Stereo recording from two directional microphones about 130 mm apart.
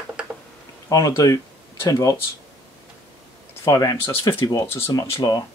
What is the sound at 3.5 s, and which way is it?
Speech, 25° left (ahead or behind).